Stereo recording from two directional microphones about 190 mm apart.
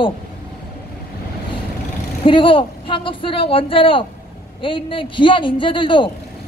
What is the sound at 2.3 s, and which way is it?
A man's voice, 25° left (ahead or behind).